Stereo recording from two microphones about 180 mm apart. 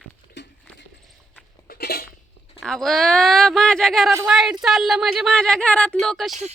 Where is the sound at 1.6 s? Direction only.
60° left (ahead or behind).